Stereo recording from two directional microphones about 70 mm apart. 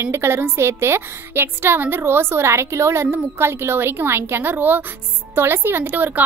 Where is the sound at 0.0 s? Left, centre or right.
Right.